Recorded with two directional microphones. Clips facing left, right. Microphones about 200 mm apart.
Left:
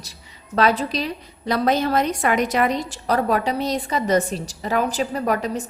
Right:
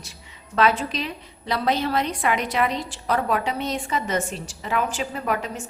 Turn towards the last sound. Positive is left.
turn(degrees=35)  # may be behind; listen again after turning